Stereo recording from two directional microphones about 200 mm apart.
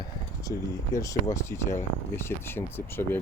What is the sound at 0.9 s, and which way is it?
Speech, 15° left (ahead or behind).